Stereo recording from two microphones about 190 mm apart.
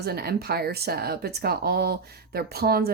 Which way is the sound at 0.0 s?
55° right (ahead or behind).